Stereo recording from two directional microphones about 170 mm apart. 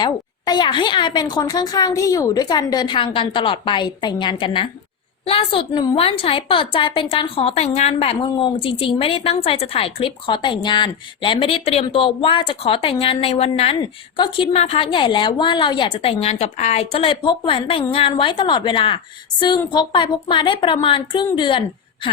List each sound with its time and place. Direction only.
0.0 s a woman's voice: 25° left (ahead or behind)